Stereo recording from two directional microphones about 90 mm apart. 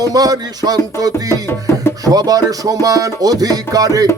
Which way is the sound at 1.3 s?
25° left (ahead or behind).